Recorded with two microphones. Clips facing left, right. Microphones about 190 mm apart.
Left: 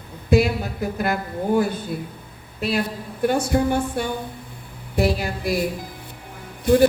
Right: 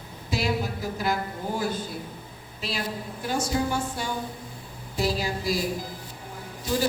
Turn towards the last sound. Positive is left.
turn(degrees=60)  # may be behind; listen again after turning